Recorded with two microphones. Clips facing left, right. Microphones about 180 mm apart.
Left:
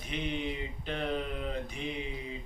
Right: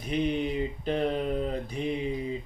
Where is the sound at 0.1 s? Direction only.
40° right (ahead or behind).